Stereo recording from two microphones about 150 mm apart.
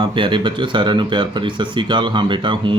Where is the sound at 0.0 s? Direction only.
35° right (ahead or behind).